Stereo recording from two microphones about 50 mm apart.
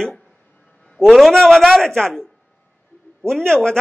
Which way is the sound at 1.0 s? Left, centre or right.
Centre.